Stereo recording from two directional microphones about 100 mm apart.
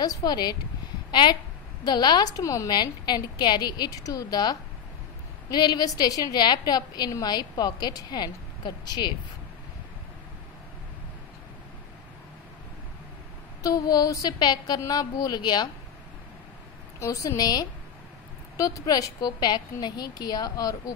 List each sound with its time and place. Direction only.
0.0 s a woman's voice: 45° left (ahead or behind)
2.7 s a woman's voice: 45° left (ahead or behind)
13.6 s a woman's voice: 40° left (ahead or behind)
17.0 s a woman's voice: 30° left (ahead or behind)